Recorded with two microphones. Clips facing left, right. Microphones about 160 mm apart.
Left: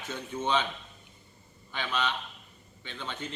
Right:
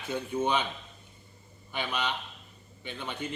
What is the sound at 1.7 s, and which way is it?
A man's voice, 10° right (ahead or behind).